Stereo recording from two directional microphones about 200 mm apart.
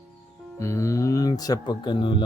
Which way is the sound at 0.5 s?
15° left (ahead or behind).